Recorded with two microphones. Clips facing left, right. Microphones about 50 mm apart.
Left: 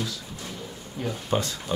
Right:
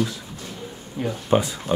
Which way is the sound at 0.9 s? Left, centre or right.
Centre.